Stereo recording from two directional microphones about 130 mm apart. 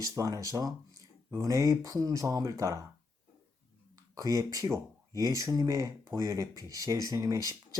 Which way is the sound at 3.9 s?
25° right (ahead or behind).